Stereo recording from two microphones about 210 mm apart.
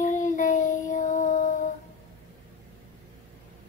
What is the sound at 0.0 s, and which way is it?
Child singing, 35° left (ahead or behind).